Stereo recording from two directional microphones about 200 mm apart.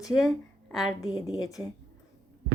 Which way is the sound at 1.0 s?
20° left (ahead or behind).